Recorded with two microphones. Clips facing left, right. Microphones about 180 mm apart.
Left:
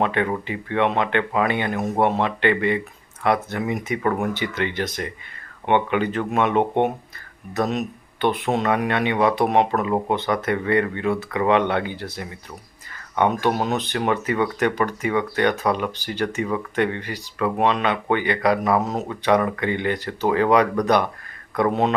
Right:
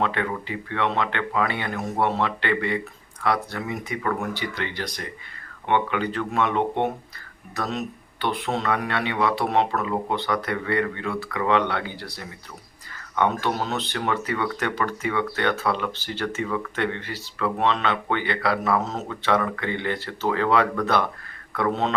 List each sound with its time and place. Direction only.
0.0 s speech: 20° left (ahead or behind)